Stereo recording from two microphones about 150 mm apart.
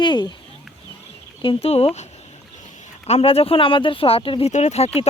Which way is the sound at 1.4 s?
40° left (ahead or behind).